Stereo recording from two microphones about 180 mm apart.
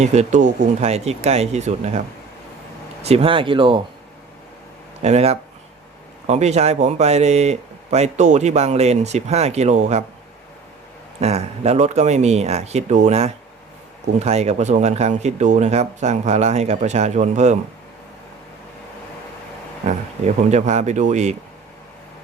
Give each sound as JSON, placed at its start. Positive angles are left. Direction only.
{"t": 0.0, "sound": "speech", "side_deg": -40}
{"t": 5.0, "sound": "speech", "side_deg": -35}
{"t": 11.2, "sound": "speech", "side_deg": -35}
{"t": 19.8, "sound": "speech", "side_deg": -40}